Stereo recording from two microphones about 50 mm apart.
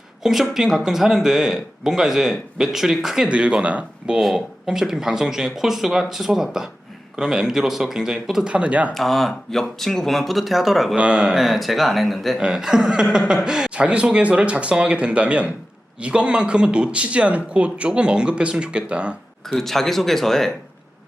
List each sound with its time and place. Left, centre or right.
0.2 s speech: centre
3.2 s speech: right
4.4 s speech: centre
8.5 s speech: right
8.9 s speech: centre
10.9 s speech: centre
12.4 s speech: centre
19.5 s speech: centre